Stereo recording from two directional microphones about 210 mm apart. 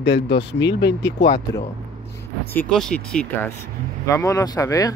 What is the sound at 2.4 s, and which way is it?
Speech, 10° left (ahead or behind).